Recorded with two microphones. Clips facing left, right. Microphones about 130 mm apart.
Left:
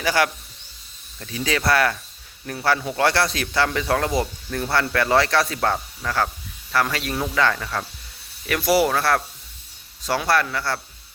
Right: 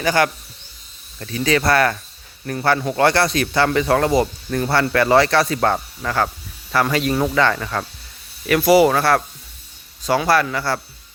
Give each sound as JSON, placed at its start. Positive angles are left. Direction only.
{"t": 0.0, "sound": "speech", "side_deg": 5}